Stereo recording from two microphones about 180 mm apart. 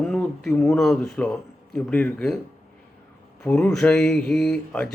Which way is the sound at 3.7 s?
5° left (ahead or behind).